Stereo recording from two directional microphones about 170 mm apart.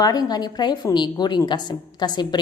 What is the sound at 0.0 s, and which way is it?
A woman's voice, 25° left (ahead or behind).